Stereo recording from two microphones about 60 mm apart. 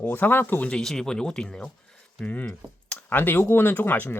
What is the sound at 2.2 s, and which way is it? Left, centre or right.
Speech, left.